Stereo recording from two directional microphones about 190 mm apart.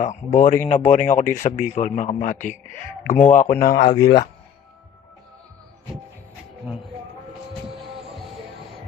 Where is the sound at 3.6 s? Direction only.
50° left (ahead or behind).